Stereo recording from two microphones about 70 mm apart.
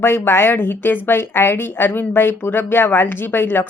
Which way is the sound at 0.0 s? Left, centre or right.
Left.